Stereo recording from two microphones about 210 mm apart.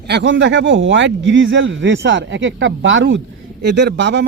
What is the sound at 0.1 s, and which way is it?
Speech, 60° right (ahead or behind).